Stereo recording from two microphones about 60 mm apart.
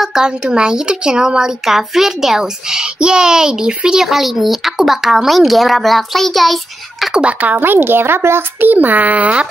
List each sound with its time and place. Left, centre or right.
0.0 s speech: centre
7.2 s speech: right
7.5 s a child's voice: right